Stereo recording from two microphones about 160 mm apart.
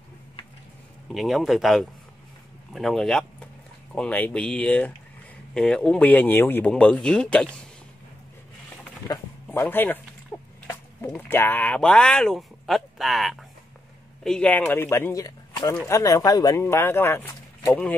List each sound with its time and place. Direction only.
1.1 s speech: centre (ahead or behind)
9.0 s speech: 15° left (ahead or behind)